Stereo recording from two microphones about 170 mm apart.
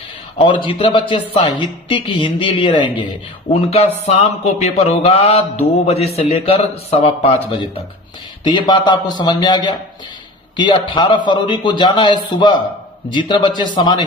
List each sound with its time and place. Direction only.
0.3 s mantra: 30° left (ahead or behind)
8.4 s speech: 25° left (ahead or behind)